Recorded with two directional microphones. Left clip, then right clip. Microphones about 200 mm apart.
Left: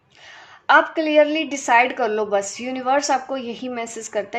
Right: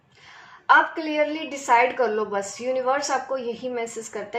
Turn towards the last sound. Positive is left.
turn(degrees=50)  # may be behind; listen again after turning